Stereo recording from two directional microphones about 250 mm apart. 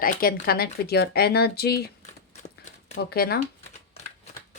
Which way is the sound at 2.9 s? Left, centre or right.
Left.